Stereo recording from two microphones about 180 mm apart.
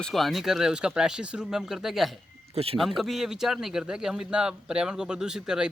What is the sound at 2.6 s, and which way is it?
Speech, 35° right (ahead or behind).